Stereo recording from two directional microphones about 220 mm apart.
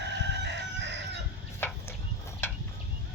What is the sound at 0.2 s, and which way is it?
Crowing, 55° right (ahead or behind).